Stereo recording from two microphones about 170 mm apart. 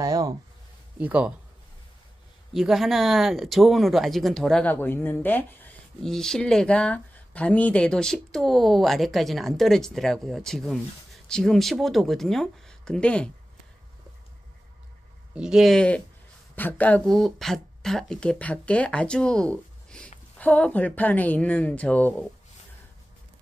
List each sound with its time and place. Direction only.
0.0 s a sound: 20° right (ahead or behind)
0.9 s speech: 5° right (ahead or behind)
2.5 s speech: centre (ahead or behind)
15.3 s speech: 5° right (ahead or behind)